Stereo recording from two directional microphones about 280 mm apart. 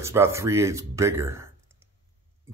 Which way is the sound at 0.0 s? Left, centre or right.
Centre.